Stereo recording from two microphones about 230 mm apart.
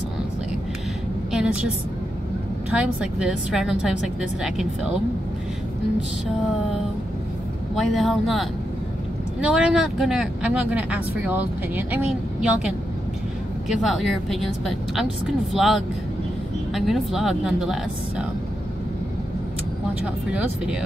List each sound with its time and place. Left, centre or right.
1.3 s a sound: centre
2.7 s speech: centre
7.7 s speech: centre
20.2 s speech: centre